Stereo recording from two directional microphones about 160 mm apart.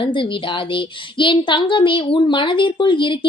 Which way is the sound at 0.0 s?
30° left (ahead or behind).